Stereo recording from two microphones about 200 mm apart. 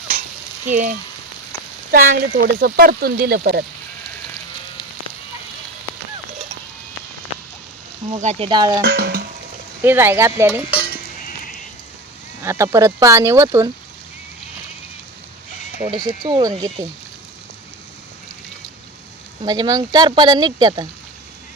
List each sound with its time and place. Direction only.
0.7 s frying: 40° right (ahead or behind)
1.9 s speech: 45° right (ahead or behind)
8.1 s speech: 30° right (ahead or behind)
8.8 s stir: 55° right (ahead or behind)
9.8 s speech: 10° right (ahead or behind)
12.4 s speech: 15° right (ahead or behind)
15.8 s speech: 20° right (ahead or behind)
19.4 s speech: 20° right (ahead or behind)